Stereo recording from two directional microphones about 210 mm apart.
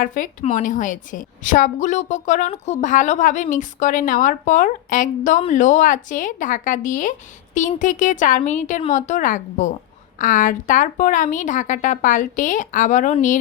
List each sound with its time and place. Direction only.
0.0 s a woman's voice: 40° left (ahead or behind)